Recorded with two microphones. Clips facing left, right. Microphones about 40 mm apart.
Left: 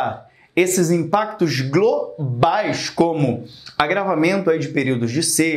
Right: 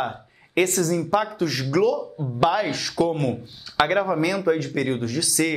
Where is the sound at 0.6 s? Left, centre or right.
Right.